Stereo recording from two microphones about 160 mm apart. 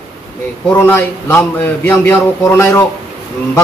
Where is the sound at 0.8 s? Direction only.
15° left (ahead or behind).